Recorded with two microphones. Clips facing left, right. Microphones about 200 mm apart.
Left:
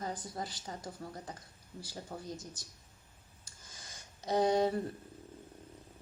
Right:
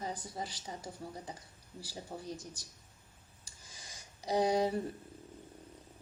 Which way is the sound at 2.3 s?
10° right (ahead or behind).